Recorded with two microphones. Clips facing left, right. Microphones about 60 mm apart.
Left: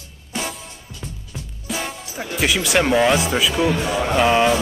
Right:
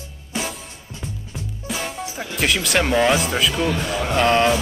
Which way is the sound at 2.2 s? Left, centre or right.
Centre.